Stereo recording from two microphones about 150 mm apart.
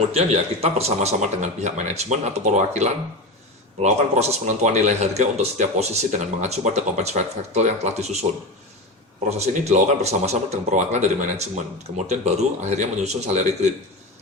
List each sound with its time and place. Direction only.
0.1 s speech: 45° right (ahead or behind)
9.6 s speech: 50° right (ahead or behind)